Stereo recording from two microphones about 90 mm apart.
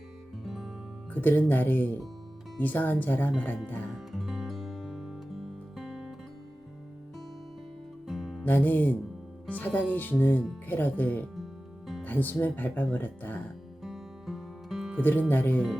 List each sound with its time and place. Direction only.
0.4 s music: centre (ahead or behind)
1.1 s speech: 20° left (ahead or behind)
3.9 s music: centre (ahead or behind)
8.0 s music: 5° right (ahead or behind)
8.4 s speech: 20° left (ahead or behind)
13.8 s music: 5° right (ahead or behind)
15.3 s speech: 20° left (ahead or behind)